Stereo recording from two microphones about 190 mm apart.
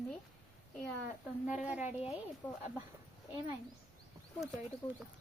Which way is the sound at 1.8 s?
35° left (ahead or behind).